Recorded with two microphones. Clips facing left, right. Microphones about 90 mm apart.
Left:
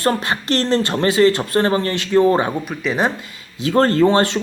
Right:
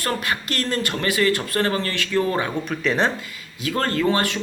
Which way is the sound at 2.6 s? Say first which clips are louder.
Left 1 dB; 5° left (ahead or behind).